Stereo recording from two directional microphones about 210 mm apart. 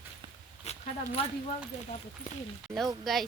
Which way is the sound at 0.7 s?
30° left (ahead or behind).